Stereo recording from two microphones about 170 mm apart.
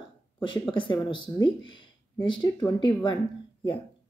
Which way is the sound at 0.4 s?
30° left (ahead or behind).